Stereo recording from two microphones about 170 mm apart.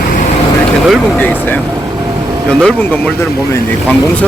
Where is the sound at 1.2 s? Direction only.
10° left (ahead or behind).